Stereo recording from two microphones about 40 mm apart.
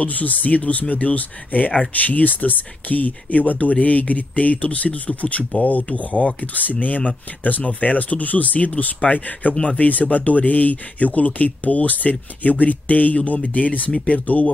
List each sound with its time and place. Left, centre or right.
0.0 s speech: left